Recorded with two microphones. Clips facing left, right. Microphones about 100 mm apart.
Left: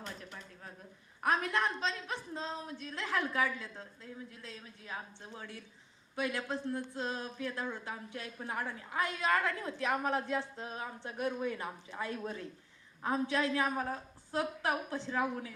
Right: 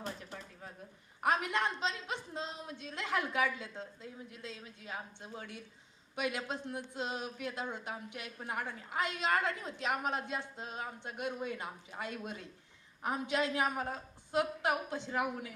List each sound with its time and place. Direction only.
1.3 s a woman's voice: 20° right (ahead or behind)